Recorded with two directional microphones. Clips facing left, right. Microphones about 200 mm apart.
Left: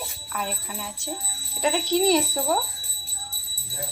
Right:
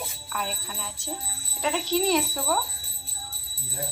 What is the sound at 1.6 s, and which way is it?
Speech, 15° left (ahead or behind).